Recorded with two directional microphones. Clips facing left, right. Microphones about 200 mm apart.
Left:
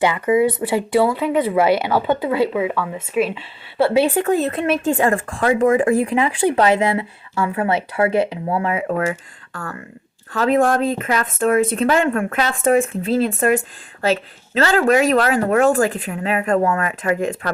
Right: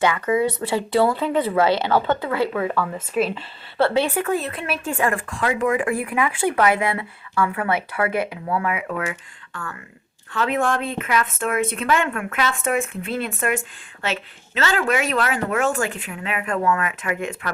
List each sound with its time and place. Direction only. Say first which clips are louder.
0.0 s speech: left 4 dB; 20° left (ahead or behind)
0.9 s speech: left 2 dB; 5° left (ahead or behind)
4.1 s speech: left 5 dB; 35° left (ahead or behind)
5.9 s speech: left 6 dB; 20° left (ahead or behind)